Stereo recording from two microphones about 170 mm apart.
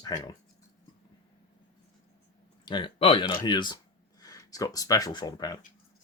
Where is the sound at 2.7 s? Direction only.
30° left (ahead or behind).